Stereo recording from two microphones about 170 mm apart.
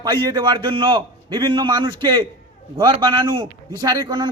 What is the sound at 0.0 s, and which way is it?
A man's voice, 25° right (ahead or behind).